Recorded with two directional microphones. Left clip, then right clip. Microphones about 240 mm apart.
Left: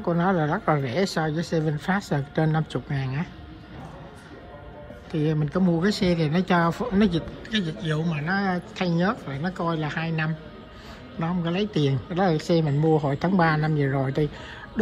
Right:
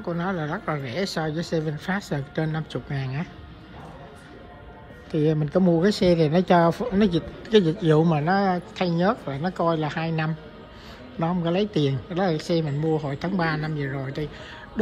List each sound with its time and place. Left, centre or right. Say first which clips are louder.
0.0 s a man's voice: left 5 dB; centre
5.1 s a man's voice: right 4 dB; centre